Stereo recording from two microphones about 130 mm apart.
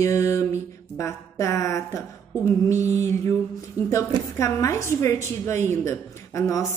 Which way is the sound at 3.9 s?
20° left (ahead or behind).